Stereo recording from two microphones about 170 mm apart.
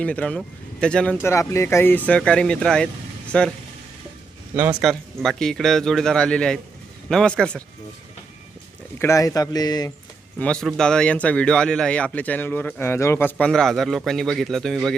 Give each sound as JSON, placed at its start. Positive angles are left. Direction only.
{"t": 0.0, "sound": "speech", "side_deg": 5}
{"t": 4.8, "sound": "a man's voice", "side_deg": 0}
{"t": 9.0, "sound": "a man's voice", "side_deg": 15}
{"t": 10.4, "sound": "a man's voice", "side_deg": 5}
{"t": 13.4, "sound": "a man's voice", "side_deg": 5}